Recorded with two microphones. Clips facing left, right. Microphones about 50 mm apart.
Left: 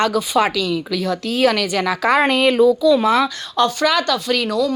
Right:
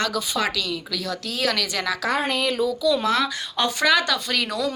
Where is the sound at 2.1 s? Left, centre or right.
Left.